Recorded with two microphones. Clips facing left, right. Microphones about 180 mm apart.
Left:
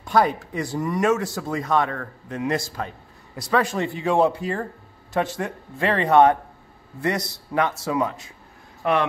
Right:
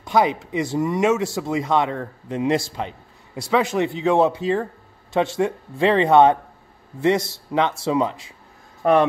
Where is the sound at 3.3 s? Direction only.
15° right (ahead or behind).